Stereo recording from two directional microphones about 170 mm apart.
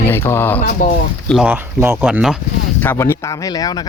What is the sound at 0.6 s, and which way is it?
Speech, 50° left (ahead or behind).